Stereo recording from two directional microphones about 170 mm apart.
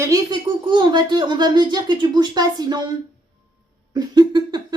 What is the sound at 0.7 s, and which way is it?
A woman's voice, 25° right (ahead or behind).